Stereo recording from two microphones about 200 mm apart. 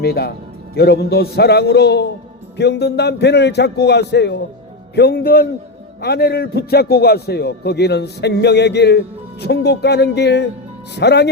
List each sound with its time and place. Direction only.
0.0 s a man's voice: 55° left (ahead or behind)